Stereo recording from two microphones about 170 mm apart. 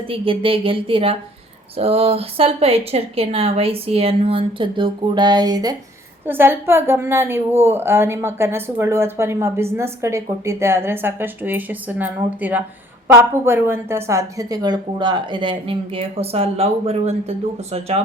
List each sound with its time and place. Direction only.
0.1 s a woman's voice: 30° right (ahead or behind)
6.2 s a woman's voice: 10° right (ahead or behind); by 18.0 s 40° right (ahead or behind)